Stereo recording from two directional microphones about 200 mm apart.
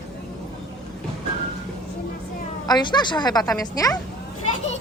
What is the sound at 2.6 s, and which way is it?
A woman's voice, 20° left (ahead or behind).